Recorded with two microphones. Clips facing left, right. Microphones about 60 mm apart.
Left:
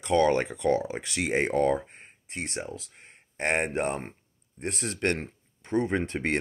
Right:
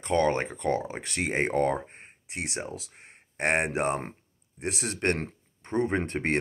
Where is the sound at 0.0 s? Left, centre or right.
Right.